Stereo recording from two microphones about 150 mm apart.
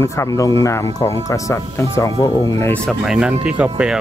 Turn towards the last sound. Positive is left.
turn(degrees=-5)  # may be behind; listen again after turning